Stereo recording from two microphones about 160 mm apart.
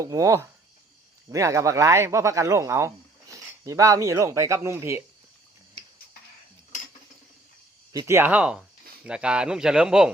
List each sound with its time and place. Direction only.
0.0 s speech: 20° right (ahead or behind)
7.9 s a man's voice: 15° right (ahead or behind)